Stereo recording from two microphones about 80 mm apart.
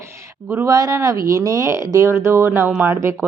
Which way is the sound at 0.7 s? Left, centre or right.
Right.